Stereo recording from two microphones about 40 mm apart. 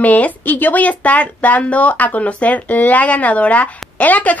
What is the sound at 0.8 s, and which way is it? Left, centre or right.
A woman's voice, left.